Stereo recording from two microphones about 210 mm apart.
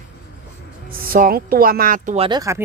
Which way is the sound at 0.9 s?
45° right (ahead or behind).